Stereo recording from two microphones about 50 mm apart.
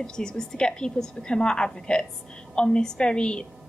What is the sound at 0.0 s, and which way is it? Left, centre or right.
A woman's voice, centre.